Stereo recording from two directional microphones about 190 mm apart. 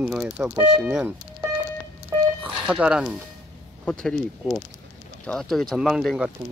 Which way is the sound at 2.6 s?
5° right (ahead or behind).